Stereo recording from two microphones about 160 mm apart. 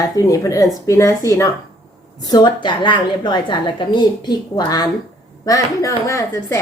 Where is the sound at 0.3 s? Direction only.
20° left (ahead or behind).